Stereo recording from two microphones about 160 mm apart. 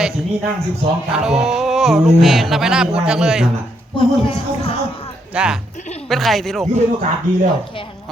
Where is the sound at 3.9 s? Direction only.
35° left (ahead or behind).